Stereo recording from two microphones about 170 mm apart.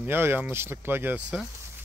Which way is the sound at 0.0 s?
10° right (ahead or behind).